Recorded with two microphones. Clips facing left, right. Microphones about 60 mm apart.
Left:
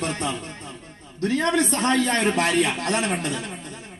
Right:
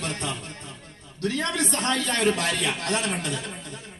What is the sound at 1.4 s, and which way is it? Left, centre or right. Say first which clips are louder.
A man's voice: left 7 dB; left.